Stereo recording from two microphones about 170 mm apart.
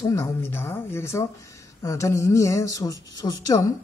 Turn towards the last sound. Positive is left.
turn(degrees=20)  # may be behind; listen again after turning